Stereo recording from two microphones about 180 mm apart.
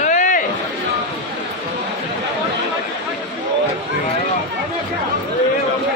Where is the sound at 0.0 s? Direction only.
45° left (ahead or behind).